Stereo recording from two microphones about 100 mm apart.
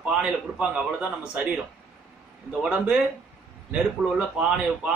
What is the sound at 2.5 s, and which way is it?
A man's voice, 10° right (ahead or behind).